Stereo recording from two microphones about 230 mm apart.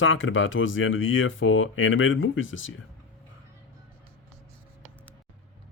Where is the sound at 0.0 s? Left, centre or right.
Left.